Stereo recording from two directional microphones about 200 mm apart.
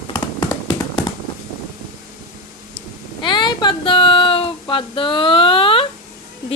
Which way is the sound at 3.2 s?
20° left (ahead or behind).